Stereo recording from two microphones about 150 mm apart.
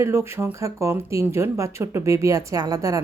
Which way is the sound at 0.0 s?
20° right (ahead or behind).